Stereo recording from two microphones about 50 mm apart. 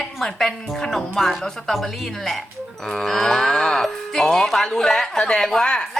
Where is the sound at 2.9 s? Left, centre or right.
Centre.